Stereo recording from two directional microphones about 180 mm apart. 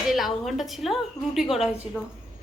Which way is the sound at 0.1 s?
Centre (ahead or behind).